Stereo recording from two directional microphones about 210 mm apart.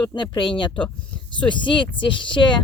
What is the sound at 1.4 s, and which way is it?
Speech, 25° left (ahead or behind).